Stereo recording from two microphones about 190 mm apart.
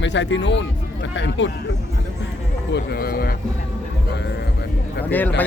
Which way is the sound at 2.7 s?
55° left (ahead or behind).